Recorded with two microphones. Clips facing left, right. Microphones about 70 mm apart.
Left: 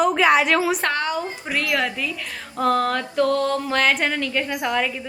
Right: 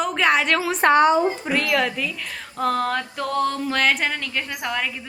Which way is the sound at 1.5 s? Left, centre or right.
Centre.